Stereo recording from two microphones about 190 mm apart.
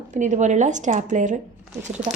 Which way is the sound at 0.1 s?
40° right (ahead or behind).